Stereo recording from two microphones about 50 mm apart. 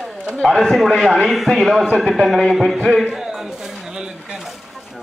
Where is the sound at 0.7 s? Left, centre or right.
Centre.